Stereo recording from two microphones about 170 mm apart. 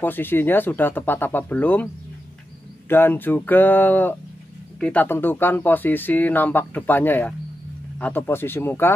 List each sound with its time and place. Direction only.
0.0 s speech: 10° left (ahead or behind)
2.9 s speech: 10° left (ahead or behind)